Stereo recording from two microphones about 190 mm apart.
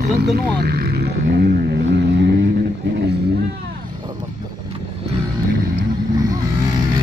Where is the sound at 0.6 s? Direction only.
55° right (ahead or behind).